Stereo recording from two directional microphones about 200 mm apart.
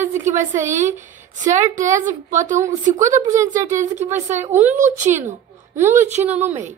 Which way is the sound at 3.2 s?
15° right (ahead or behind).